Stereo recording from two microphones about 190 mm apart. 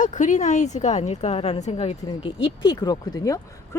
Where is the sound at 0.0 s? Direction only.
40° left (ahead or behind).